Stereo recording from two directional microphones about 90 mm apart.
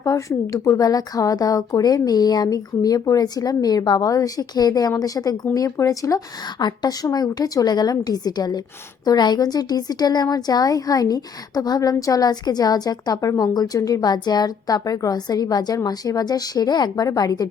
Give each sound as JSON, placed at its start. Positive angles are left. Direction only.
{"t": 0.0, "sound": "a woman's voice", "side_deg": 40}